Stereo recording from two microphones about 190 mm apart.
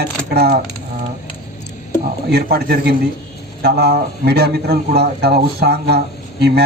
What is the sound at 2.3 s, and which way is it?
Speech, 55° right (ahead or behind).